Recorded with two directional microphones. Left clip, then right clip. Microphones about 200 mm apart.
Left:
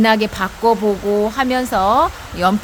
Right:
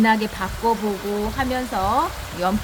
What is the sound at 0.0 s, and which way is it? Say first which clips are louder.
A woman's voice: left 5 dB; 60° left (ahead or behind).